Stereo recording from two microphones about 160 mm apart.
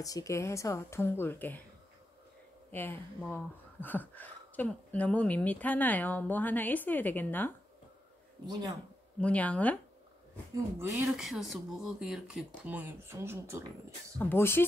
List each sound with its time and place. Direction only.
0.0 s speech: 20° left (ahead or behind)
2.7 s speech: 15° left (ahead or behind)
9.2 s speech: 10° left (ahead or behind)
10.5 s speech: 15° right (ahead or behind)
11.1 s speech: centre (ahead or behind); by 14.1 s 15° right (ahead or behind)
14.1 s speech: 15° left (ahead or behind)